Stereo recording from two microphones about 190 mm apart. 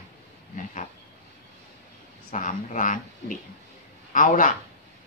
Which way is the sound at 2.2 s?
40° left (ahead or behind).